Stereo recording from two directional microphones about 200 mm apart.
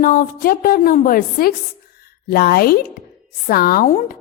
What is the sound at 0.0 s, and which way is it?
A woman's voice, 40° left (ahead or behind).